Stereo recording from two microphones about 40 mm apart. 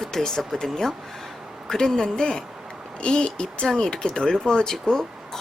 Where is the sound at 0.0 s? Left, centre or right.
Centre.